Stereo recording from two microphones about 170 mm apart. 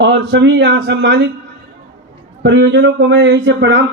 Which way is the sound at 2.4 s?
85° right.